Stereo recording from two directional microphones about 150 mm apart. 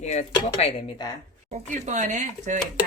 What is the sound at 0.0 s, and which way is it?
Speech, 50° left (ahead or behind).